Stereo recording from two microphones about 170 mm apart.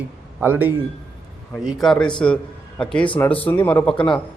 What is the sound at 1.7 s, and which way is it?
A man's voice, centre (ahead or behind).